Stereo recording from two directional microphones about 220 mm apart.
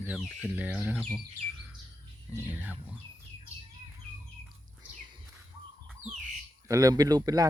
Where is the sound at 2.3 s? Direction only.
10° right (ahead or behind).